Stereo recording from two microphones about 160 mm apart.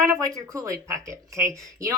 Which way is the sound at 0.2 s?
20° right (ahead or behind).